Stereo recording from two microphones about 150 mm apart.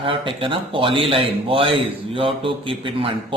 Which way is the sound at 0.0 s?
35° right (ahead or behind).